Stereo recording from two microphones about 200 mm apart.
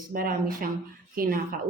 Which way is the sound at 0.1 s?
45° right (ahead or behind).